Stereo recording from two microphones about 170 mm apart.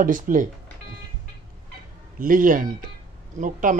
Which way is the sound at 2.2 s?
55° right (ahead or behind).